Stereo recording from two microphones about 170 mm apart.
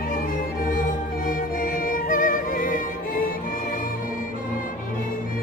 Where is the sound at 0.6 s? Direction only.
50° left (ahead or behind).